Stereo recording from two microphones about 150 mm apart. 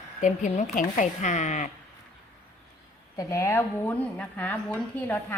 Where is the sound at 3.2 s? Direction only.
20° left (ahead or behind).